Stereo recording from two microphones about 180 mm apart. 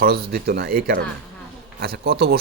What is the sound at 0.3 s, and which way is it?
Speech, 60° right (ahead or behind).